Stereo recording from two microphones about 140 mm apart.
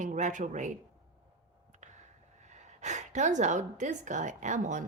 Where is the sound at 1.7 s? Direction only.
60° right (ahead or behind).